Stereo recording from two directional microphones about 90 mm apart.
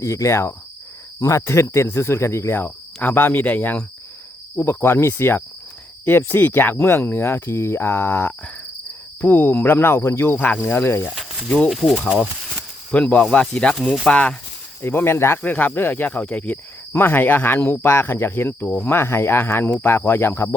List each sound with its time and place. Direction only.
0.0 s cricket: 35° left (ahead or behind)
1.2 s speech: 35° left (ahead or behind)
11.4 s speech: 5° left (ahead or behind)
12.9 s speech: 15° left (ahead or behind)
14.8 s speech: 25° left (ahead or behind)